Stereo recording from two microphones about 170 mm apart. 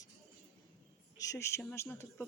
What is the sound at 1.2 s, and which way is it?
Speech, 20° left (ahead or behind).